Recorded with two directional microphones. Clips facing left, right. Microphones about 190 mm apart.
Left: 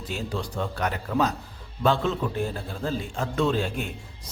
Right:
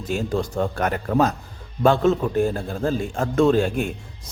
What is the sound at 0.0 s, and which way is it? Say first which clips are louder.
A man's voice: right 7 dB; 45° right (ahead or behind).